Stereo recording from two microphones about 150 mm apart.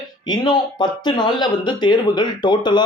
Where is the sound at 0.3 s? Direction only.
30° left (ahead or behind).